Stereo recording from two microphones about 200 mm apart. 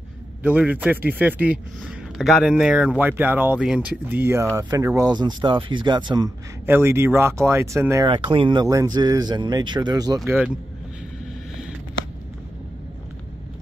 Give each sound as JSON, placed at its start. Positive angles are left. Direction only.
{"t": 0.4, "sound": "a man's voice", "side_deg": -5}
{"t": 10.2, "sound": "speech", "side_deg": -5}